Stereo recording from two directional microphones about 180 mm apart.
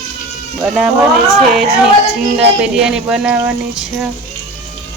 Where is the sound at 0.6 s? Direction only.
5° right (ahead or behind).